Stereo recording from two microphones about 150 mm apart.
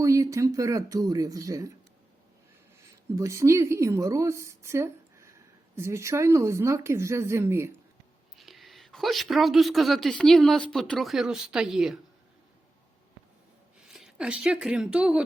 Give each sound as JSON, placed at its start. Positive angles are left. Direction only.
{"t": 0.0, "sound": "speech", "side_deg": -20}
{"t": 2.8, "sound": "speech", "side_deg": -20}
{"t": 8.4, "sound": "a woman's voice", "side_deg": 0}
{"t": 13.7, "sound": "speech", "side_deg": -5}